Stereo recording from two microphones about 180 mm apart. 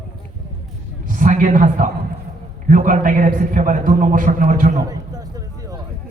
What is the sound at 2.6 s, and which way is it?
A man's voice, 45° right (ahead or behind).